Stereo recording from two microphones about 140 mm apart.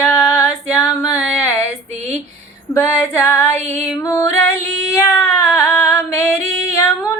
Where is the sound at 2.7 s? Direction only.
15° left (ahead or behind).